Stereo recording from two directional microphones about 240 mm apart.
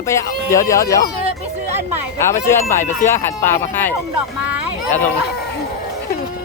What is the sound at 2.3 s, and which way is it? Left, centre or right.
Speech, centre.